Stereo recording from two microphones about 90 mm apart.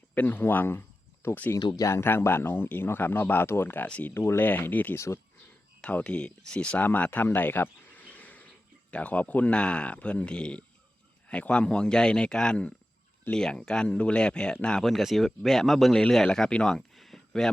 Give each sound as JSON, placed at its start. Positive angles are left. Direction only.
{"t": 0.1, "sound": "speech", "side_deg": 20}
{"t": 3.8, "sound": "speech", "side_deg": 15}
{"t": 4.1, "sound": "speech", "side_deg": 25}
{"t": 4.9, "sound": "speech", "side_deg": 30}
{"t": 5.8, "sound": "speech", "side_deg": 15}